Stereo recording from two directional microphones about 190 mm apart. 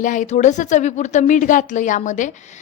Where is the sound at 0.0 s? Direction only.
40° left (ahead or behind).